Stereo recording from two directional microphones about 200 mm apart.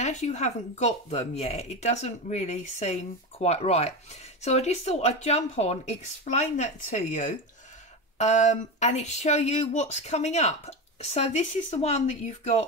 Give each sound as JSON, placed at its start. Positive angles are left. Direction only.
{"t": 0.0, "sound": "speech", "side_deg": 35}